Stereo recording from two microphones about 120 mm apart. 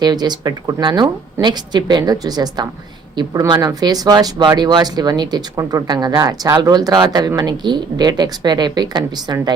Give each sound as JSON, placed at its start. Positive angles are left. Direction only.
{"t": 0.0, "sound": "speech", "side_deg": -35}